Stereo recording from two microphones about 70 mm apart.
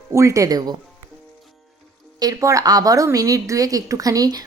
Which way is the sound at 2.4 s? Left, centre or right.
Right.